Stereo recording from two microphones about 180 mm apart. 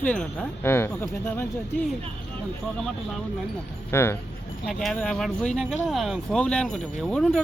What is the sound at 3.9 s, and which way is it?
Speech, 15° left (ahead or behind).